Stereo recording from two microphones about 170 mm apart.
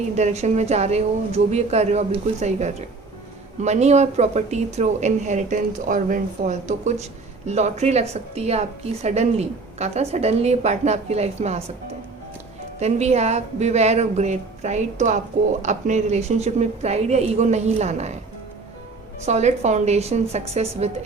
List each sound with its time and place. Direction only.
0.2 s a woman's voice: 40° right (ahead or behind)
12.8 s a woman's voice: 40° right (ahead or behind)
19.2 s a woman's voice: 40° right (ahead or behind)